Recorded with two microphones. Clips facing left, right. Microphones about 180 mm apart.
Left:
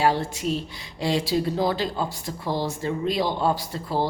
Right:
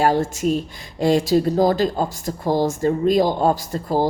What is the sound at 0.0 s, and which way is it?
A woman's voice, 45° right (ahead or behind).